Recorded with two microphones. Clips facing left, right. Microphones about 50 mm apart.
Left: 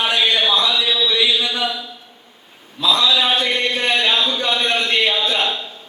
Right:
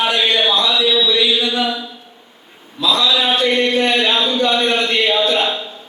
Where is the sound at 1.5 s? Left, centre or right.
Centre.